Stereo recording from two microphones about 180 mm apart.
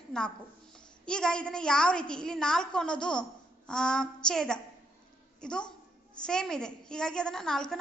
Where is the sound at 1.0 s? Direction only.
5° left (ahead or behind).